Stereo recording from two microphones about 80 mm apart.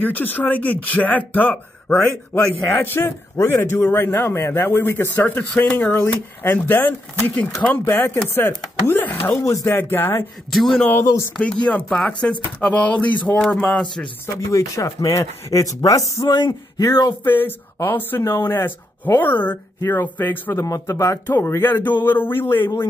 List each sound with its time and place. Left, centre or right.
0.0 s a man's voice: left
9.4 s speech: left
9.8 s a man's voice: left
10.5 s a man's voice: centre
11.3 s speech: centre
13.7 s speech: centre
14.2 s speech: left
17.2 s a man's voice: left
18.2 s speech: left
18.5 s a man's voice: left
20.5 s a man's voice: left